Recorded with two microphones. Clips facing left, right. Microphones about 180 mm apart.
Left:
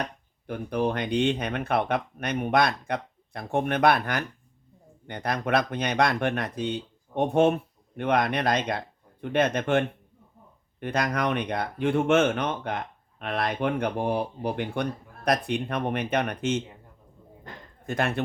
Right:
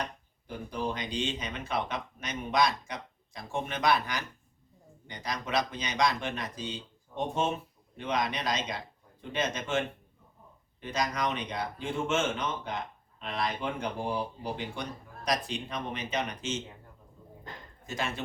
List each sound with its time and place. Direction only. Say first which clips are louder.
0.0 s speech: left 4 dB; 60° left (ahead or behind)
17.8 s speech: left 8 dB; 60° left (ahead or behind)